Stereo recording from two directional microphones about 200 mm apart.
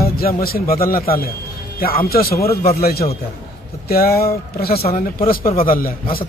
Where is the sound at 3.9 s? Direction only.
50° left (ahead or behind).